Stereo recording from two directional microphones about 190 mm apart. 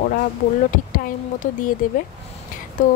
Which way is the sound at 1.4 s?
45° left (ahead or behind).